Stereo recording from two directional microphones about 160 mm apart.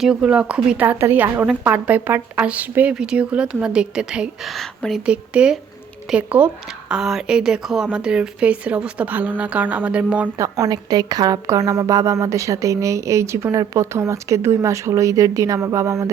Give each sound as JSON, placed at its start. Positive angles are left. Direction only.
{"t": 0.0, "sound": "a woman's voice", "side_deg": -5}
{"t": 10.4, "sound": "a woman's voice", "side_deg": -25}